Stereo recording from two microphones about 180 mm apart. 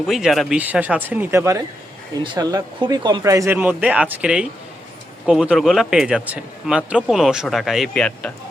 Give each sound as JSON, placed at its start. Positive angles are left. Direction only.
{"t": 0.1, "sound": "a man's voice", "side_deg": 0}